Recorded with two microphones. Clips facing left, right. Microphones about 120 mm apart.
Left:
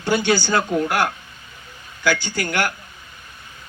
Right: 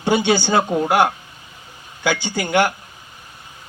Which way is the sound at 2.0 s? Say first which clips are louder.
Even; 20° right (ahead or behind).